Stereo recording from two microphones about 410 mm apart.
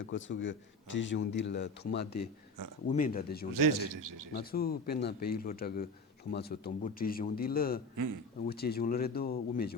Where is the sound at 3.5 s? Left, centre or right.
Right.